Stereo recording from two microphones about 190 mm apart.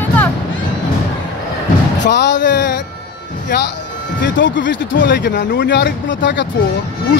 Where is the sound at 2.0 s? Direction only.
65° left (ahead or behind).